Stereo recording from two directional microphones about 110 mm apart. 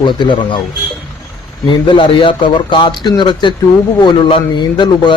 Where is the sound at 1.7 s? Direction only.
45° left (ahead or behind).